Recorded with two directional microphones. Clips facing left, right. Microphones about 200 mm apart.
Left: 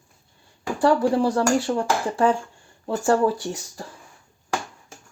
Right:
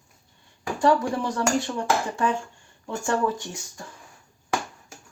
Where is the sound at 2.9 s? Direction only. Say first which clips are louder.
Left 5 dB; 35° left (ahead or behind).